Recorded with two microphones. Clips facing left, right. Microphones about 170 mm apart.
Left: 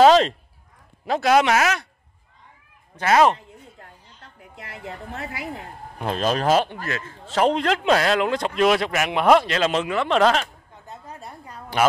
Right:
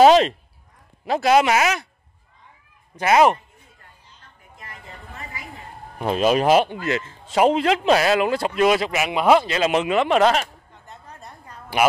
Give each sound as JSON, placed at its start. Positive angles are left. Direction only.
{"t": 0.0, "sound": "speech", "side_deg": -10}
{"t": 3.0, "sound": "a man's voice", "side_deg": -10}
{"t": 3.3, "sound": "a sound", "side_deg": 75}
{"t": 5.9, "sound": "a man's voice", "side_deg": -5}
{"t": 10.1, "sound": "speech", "side_deg": -5}
{"t": 11.7, "sound": "a man's voice", "side_deg": -10}